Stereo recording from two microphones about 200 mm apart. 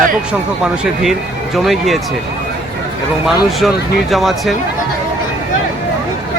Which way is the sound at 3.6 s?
Centre (ahead or behind).